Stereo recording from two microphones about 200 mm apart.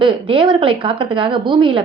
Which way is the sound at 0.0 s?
25° right (ahead or behind).